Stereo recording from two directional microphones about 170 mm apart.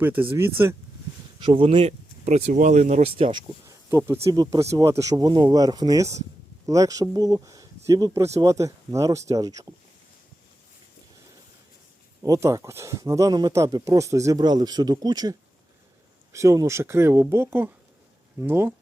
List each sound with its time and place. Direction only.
0.0 s speech: 10° right (ahead or behind)
1.4 s speech: 30° right (ahead or behind)
3.8 s speech: 15° right (ahead or behind)
12.2 s speech: 20° right (ahead or behind)